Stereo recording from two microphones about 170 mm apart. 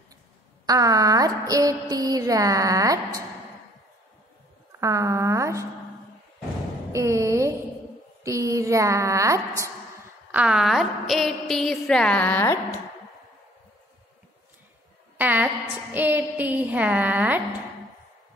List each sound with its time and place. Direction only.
0.7 s a sound: 20° right (ahead or behind)
4.7 s a woman's voice: 20° right (ahead or behind)
6.9 s a sound: 15° right (ahead or behind)
8.2 s a woman's voice: 20° right (ahead or behind)
10.3 s a woman's voice: 5° right (ahead or behind); by 12.5 s 10° left (ahead or behind)
15.1 s a woman's voice: 10° right (ahead or behind)